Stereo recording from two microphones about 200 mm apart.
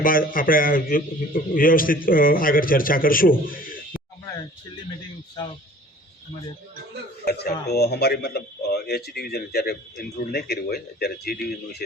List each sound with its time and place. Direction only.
0.0 s speech: 45° left (ahead or behind)
7.3 s speech: 55° left (ahead or behind)